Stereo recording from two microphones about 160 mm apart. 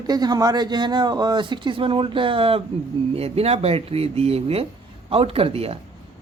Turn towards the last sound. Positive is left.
turn(degrees=-40)  # may be behind; listen again after turning